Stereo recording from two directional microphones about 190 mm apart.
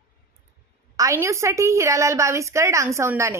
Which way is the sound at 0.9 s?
15° right (ahead or behind).